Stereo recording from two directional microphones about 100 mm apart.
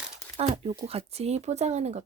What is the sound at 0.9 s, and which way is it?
Speech, 90° right.